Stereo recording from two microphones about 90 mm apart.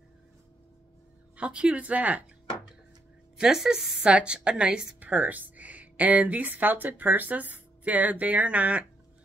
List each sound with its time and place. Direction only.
1.3 s a woman's voice: 15° right (ahead or behind)
3.3 s a woman's voice: 5° right (ahead or behind)